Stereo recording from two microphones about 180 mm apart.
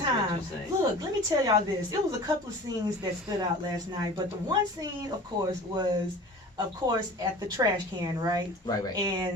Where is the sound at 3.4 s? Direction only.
20° right (ahead or behind).